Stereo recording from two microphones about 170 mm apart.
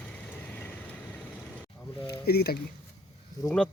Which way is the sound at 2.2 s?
65° left (ahead or behind).